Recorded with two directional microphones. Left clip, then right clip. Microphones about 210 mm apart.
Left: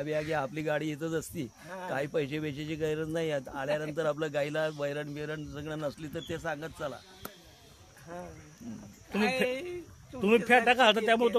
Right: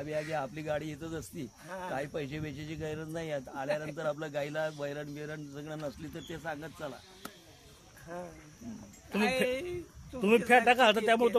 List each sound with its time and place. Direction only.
0.0 s speech: 50° left (ahead or behind)
8.1 s speech: centre (ahead or behind)